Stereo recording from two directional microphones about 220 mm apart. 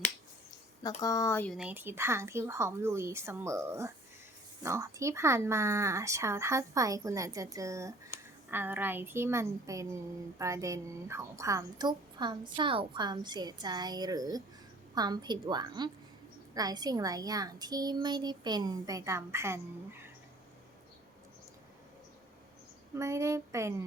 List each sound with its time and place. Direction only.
0.8 s speech: 15° left (ahead or behind)
1.5 s a woman's voice: 5° right (ahead or behind)
23.0 s speech: 15° right (ahead or behind)